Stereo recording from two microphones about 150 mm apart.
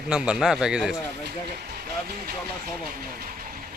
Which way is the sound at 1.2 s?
90° right.